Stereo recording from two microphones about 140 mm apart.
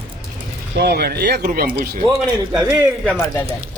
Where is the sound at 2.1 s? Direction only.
30° right (ahead or behind).